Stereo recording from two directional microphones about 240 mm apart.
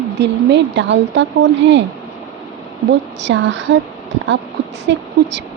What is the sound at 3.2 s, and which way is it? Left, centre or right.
Speech, right.